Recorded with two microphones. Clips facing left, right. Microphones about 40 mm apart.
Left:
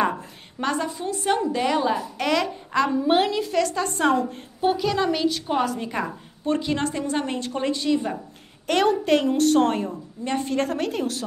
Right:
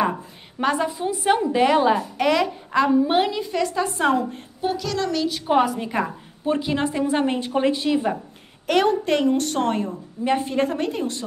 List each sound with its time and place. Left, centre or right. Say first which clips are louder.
0.6 s a woman's voice: right 3 dB; centre
1.7 s a woman's voice: right 4 dB; right
2.1 s a woman's voice: right 3 dB; centre
4.6 s speech: left 3 dB; centre
5.5 s a woman's voice: right 4 dB; centre
8.6 s a woman's voice: right 1 dB; centre
10.2 s a woman's voice: right 3 dB; centre